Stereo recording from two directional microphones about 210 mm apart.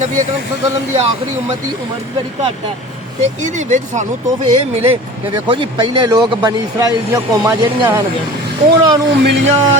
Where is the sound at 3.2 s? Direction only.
35° right (ahead or behind).